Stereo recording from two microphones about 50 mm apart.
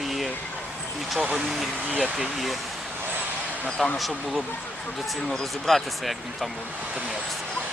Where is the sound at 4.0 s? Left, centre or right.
Centre.